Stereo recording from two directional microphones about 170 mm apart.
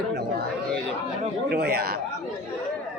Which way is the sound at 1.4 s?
70° right (ahead or behind).